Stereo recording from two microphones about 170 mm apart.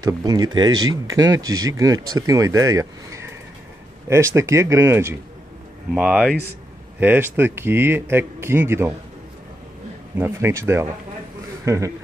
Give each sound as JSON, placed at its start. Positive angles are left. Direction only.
{"t": 0.0, "sound": "speech", "side_deg": -25}
{"t": 5.9, "sound": "speech", "side_deg": -5}
{"t": 10.1, "sound": "a man's voice", "side_deg": -15}